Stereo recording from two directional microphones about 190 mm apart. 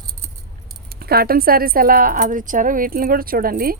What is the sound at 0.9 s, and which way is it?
Speech, 55° right (ahead or behind).